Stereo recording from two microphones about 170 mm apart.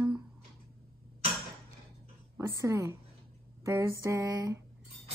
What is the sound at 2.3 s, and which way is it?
Speech, 20° right (ahead or behind).